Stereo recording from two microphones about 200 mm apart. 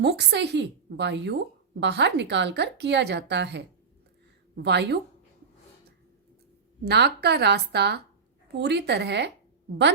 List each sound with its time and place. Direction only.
0.0 s a woman's voice: 60° right (ahead or behind)
6.8 s a woman's voice: 55° right (ahead or behind)